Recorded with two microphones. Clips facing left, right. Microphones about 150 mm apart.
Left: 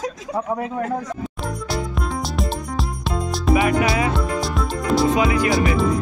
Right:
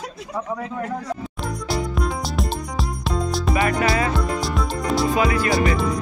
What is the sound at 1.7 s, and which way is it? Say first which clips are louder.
Music: right 2 dB; centre (ahead or behind).